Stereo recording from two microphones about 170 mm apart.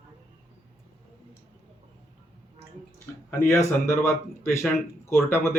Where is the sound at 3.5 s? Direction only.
15° left (ahead or behind).